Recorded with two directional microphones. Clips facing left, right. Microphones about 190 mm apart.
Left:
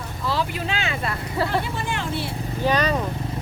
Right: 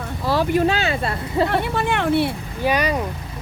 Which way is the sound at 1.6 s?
60° right (ahead or behind).